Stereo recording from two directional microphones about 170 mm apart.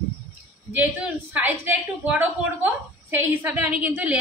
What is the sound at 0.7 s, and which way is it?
A woman's voice, 10° right (ahead or behind).